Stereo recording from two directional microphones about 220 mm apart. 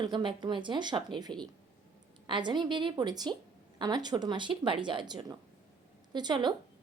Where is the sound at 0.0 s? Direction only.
20° right (ahead or behind).